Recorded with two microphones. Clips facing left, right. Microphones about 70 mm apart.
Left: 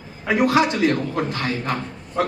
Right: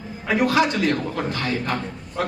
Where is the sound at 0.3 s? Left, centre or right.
Left.